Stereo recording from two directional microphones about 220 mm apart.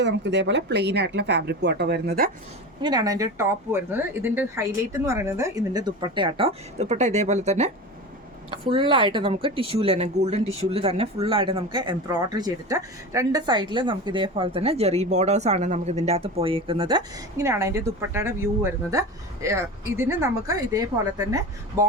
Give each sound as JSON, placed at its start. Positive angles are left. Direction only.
{"t": 0.0, "sound": "speech", "side_deg": -50}
{"t": 2.8, "sound": "a woman's voice", "side_deg": -20}